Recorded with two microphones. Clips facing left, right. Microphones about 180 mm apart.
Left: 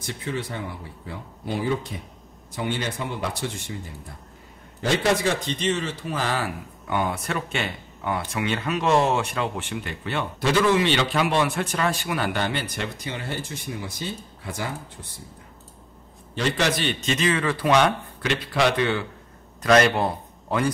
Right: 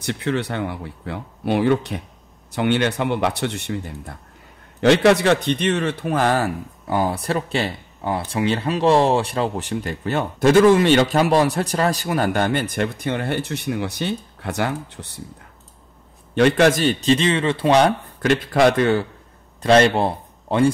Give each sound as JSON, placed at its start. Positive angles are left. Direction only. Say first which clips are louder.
{"t": 0.0, "sound": "speech", "louder": "right 7 dB", "side_deg": -70}
{"t": 16.3, "sound": "a man's voice", "louder": "right 9 dB", "side_deg": -55}
{"t": 18.2, "sound": "speech", "louder": "right 7 dB", "side_deg": -50}
{"t": 19.6, "sound": "a man's voice", "louder": "right 3 dB", "side_deg": -30}